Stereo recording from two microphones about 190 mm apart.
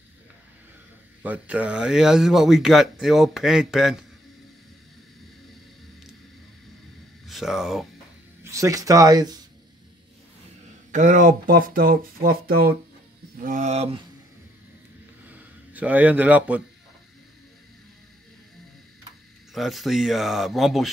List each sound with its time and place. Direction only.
1.2 s speech: 5° right (ahead or behind)
7.2 s speech: centre (ahead or behind)
8.5 s speech: 15° right (ahead or behind)
10.9 s speech: 40° right (ahead or behind)
13.4 s speech: 40° right (ahead or behind)
15.2 s a sound: 10° right (ahead or behind)
19.5 s speech: centre (ahead or behind)